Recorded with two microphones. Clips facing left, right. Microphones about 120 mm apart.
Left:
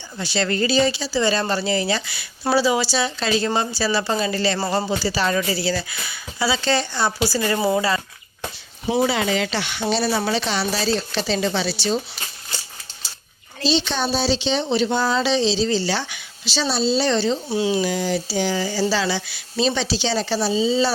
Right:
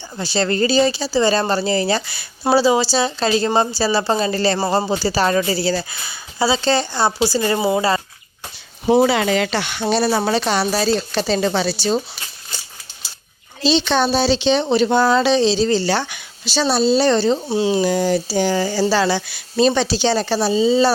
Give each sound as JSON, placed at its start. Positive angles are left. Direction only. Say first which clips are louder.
{"t": 0.2, "sound": "speech", "louder": "right 3 dB", "side_deg": -35}
{"t": 7.8, "sound": "speech", "louder": "right 3 dB", "side_deg": -35}
{"t": 9.0, "sound": "speech", "louder": "right 3 dB", "side_deg": -65}
{"t": 13.7, "sound": "speech", "louder": "right 5 dB", "side_deg": -75}
{"t": 17.5, "sound": "speech", "louder": "right 4 dB", "side_deg": -30}